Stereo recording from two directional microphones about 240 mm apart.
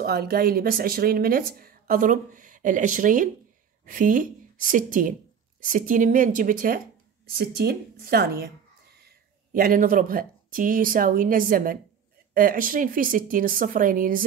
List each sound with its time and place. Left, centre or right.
0.0 s speech: right